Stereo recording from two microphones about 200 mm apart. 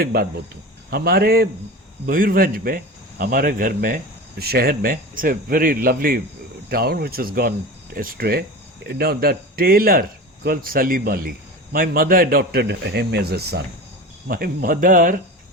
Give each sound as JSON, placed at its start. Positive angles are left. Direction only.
{"t": 0.0, "sound": "speech", "side_deg": -50}